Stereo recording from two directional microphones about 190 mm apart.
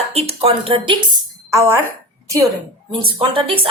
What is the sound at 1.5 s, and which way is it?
Speech, 15° right (ahead or behind).